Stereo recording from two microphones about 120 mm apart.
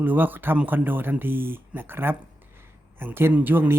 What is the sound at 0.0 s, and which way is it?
Speech, 15° right (ahead or behind).